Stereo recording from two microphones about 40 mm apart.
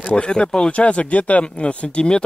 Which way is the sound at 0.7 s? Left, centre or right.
Left.